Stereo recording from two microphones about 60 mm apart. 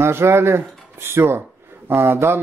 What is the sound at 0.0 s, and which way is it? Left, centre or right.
Speech, right.